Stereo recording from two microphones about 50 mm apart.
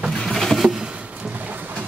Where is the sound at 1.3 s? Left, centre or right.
Right.